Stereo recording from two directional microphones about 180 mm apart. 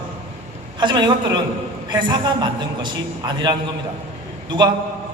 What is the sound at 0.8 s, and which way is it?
A man's voice, 25° right (ahead or behind).